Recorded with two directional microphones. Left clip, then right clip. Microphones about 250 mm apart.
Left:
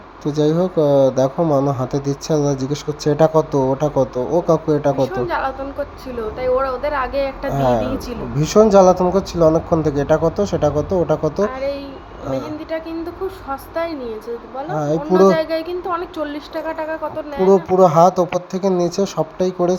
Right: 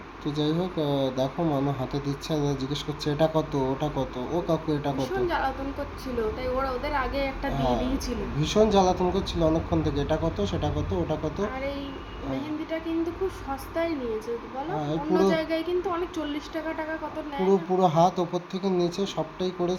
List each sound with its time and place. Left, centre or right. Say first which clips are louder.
0.3 s speech: left 11 dB; left
4.9 s music: left 8 dB; centre
7.7 s speech: left 9 dB; left
11.4 s a woman's voice: left 10 dB; centre
14.8 s speech: left 12 dB; left
15.3 s a woman's voice: left 8 dB; left
17.5 s speech: left 11 dB; left